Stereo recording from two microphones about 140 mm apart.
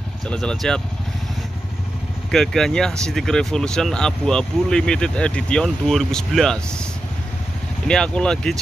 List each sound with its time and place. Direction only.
0.3 s speech: 5° left (ahead or behind)
2.3 s speech: 5° left (ahead or behind)
7.9 s speech: 5° left (ahead or behind)